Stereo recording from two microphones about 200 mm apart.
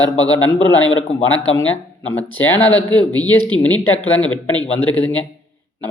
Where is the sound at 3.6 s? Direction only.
10° left (ahead or behind).